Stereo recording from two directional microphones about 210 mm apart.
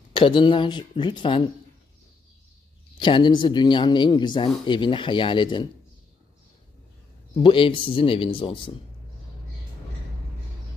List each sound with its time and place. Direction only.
0.1 s speech: 25° left (ahead or behind)
3.0 s speech: 20° left (ahead or behind)
7.4 s speech: 25° left (ahead or behind)